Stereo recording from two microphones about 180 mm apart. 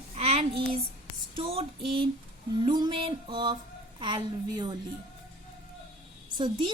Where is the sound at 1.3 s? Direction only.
30° right (ahead or behind).